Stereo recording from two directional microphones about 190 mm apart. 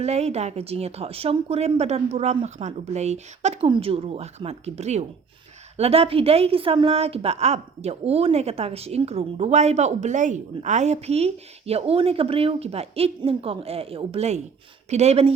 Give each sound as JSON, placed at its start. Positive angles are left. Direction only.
{"t": 0.0, "sound": "a woman's voice", "side_deg": -35}